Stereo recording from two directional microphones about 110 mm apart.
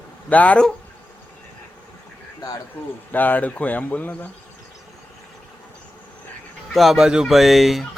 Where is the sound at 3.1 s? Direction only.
15° left (ahead or behind).